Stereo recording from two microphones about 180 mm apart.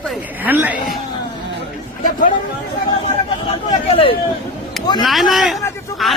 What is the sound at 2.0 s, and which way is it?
Speech, 45° left (ahead or behind).